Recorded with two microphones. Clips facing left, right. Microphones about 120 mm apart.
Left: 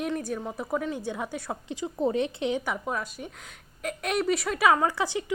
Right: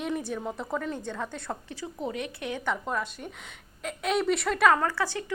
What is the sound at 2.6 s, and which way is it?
Speech, 5° left (ahead or behind).